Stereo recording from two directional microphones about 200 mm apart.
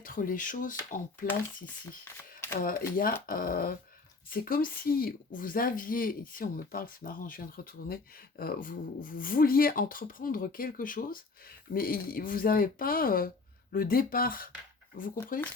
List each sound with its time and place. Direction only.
0.0 s a woman's voice: 45° left (ahead or behind)
2.6 s a woman's voice: 45° left (ahead or behind)